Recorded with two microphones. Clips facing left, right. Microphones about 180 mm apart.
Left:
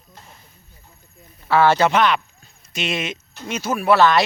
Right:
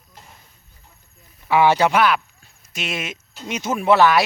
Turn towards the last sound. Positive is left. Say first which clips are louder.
# even
turn(degrees=-10)  # may be behind; listen again after turning